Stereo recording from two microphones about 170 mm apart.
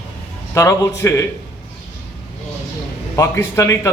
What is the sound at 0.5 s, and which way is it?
Speech, 15° left (ahead or behind).